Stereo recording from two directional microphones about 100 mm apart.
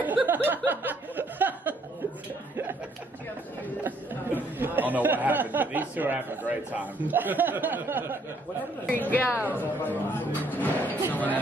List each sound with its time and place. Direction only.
0.0 s a sound: 15° right (ahead or behind)
0.7 s chuckle: 20° right (ahead or behind)
3.8 s speech: 20° right (ahead or behind)
8.8 s speech: 15° left (ahead or behind)